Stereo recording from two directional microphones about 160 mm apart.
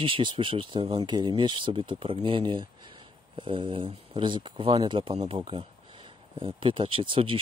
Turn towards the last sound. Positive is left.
turn(degrees=-35)  # may be behind; listen again after turning